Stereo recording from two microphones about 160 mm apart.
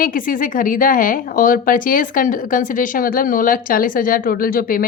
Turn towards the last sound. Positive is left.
turn(degrees=65)  # may be behind; listen again after turning